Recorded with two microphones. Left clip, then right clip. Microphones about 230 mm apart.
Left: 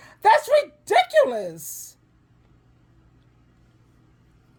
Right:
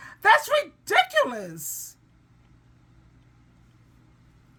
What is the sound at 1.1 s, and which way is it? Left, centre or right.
Speech, centre.